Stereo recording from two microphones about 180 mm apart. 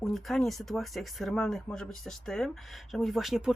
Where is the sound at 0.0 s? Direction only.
Centre (ahead or behind).